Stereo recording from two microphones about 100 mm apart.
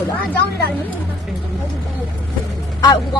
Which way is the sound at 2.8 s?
45° left (ahead or behind).